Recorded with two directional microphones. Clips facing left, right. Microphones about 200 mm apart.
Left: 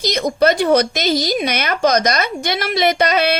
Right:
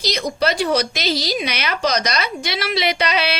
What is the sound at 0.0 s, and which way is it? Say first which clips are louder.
A woman's voice: left 5 dB; 50° left (ahead or behind).